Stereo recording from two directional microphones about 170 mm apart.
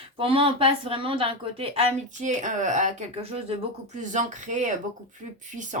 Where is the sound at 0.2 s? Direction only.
30° right (ahead or behind).